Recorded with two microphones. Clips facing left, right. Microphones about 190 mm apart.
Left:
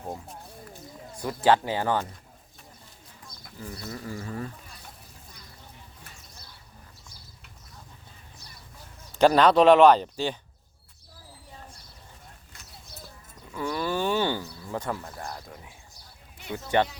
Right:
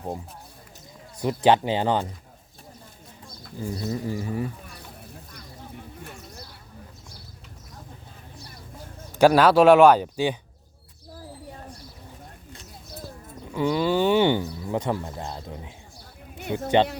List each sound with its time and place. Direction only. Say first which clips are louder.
1.2 s speech: right 3 dB; 20° right (ahead or behind)
3.6 s speech: right 8 dB; 25° right (ahead or behind)
5.3 s a sound: right 8 dB; 60° right (ahead or behind)
9.1 s speech: right 2 dB; 5° right (ahead or behind)
13.5 s speech: right 6 dB; 20° right (ahead or behind)
16.4 s speech: right 7 dB; 55° right (ahead or behind)